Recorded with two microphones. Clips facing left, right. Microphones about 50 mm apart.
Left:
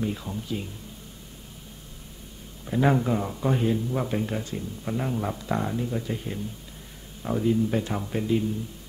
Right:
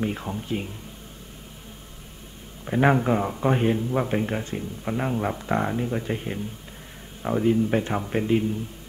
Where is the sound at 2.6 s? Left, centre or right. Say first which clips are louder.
Right 2 dB; right.